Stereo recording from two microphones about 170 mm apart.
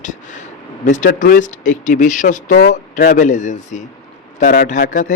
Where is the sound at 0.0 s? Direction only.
45° left (ahead or behind).